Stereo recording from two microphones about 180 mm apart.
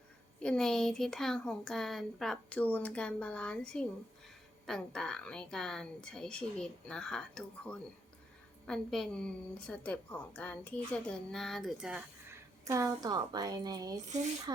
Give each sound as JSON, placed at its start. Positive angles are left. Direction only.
{"t": 0.3, "sound": "speech", "side_deg": 5}
{"t": 12.6, "sound": "speech", "side_deg": -15}